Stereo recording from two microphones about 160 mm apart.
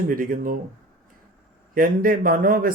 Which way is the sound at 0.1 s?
60° right (ahead or behind).